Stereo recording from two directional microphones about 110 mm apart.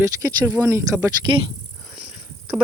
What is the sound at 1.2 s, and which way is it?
Speech, 40° right (ahead or behind).